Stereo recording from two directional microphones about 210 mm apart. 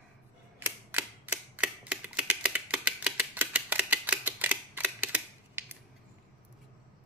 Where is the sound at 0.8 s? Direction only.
10° right (ahead or behind).